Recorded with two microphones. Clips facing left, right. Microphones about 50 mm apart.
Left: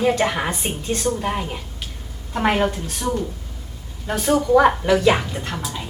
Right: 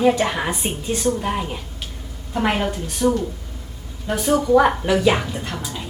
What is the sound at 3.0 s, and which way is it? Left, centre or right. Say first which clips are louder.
Speech: right 6 dB; left.